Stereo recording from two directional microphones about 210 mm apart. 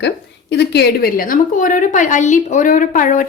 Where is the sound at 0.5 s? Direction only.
50° left (ahead or behind).